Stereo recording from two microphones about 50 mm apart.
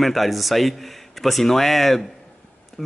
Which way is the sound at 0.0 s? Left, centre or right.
Centre.